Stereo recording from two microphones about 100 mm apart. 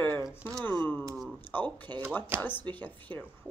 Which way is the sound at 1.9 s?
45° right (ahead or behind).